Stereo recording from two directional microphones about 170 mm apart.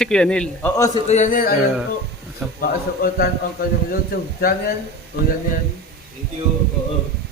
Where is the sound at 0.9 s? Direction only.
40° left (ahead or behind).